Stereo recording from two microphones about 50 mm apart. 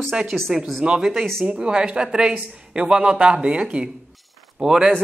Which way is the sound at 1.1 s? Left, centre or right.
Centre.